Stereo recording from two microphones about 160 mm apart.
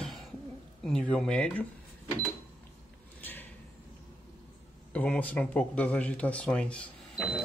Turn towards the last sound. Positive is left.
turn(degrees=5)  # may be behind; listen again after turning